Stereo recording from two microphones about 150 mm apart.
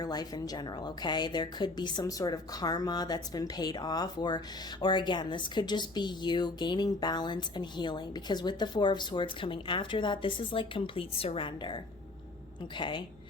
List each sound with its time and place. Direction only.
0.0 s a woman's voice: 25° left (ahead or behind)